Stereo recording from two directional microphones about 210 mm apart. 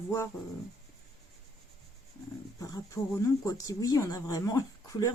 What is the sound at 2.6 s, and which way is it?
A woman's voice, 15° left (ahead or behind).